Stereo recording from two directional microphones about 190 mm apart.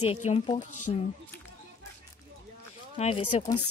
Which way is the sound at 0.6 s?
40° left (ahead or behind).